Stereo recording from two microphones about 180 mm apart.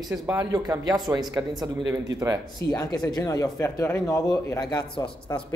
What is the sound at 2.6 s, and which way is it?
Speech, 20° left (ahead or behind).